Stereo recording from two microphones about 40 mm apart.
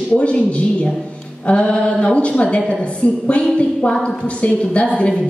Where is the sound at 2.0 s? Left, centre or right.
Left.